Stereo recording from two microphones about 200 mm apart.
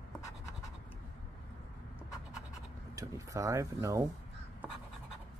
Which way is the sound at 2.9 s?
15° right (ahead or behind).